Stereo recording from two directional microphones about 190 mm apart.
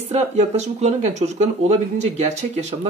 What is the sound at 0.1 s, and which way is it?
Speech, 35° right (ahead or behind).